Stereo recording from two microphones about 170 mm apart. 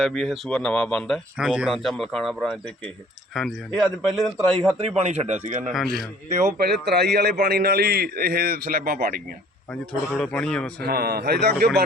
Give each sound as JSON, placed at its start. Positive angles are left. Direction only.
{"t": 0.0, "sound": "speech", "side_deg": 0}
{"t": 4.8, "sound": "a man's voice", "side_deg": -35}
{"t": 5.7, "sound": "speech", "side_deg": 0}
{"t": 6.8, "sound": "a man's voice", "side_deg": -80}
{"t": 10.2, "sound": "speech", "side_deg": 5}
{"t": 10.8, "sound": "a man's voice", "side_deg": -65}